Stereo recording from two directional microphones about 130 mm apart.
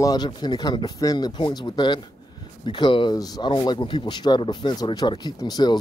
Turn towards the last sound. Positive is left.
turn(degrees=30)  # may be behind; listen again after turning